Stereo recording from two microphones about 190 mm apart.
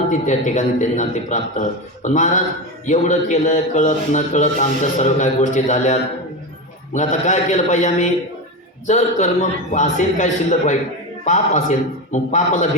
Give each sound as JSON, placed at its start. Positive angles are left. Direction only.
{"t": 0.1, "sound": "a man's voice", "side_deg": 40}